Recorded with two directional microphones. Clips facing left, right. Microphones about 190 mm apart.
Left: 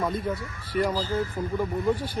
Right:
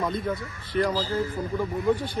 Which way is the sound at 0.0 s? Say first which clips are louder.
Even; 10° left (ahead or behind).